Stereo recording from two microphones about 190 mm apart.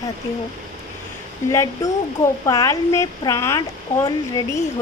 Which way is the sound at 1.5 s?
15° left (ahead or behind).